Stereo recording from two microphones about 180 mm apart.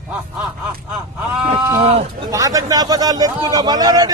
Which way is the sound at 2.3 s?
20° right (ahead or behind).